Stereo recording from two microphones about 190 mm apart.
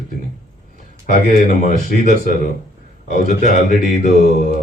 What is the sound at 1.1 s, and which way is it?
Speech, 45° left (ahead or behind).